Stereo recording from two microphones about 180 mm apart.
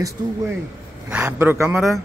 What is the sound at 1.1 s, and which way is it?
Speech, 10° right (ahead or behind).